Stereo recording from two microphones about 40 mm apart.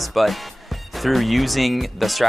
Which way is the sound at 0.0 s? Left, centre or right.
Centre.